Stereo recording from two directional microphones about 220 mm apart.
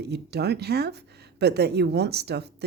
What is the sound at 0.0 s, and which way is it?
Speech, 50° right (ahead or behind).